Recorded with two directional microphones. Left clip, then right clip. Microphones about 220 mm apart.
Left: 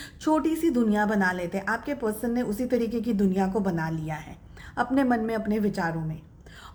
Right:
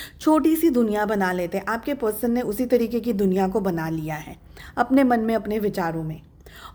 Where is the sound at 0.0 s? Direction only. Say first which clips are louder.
Right 5 dB; 40° right (ahead or behind).